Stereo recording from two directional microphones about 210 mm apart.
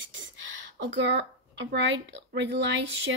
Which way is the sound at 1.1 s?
55° right (ahead or behind).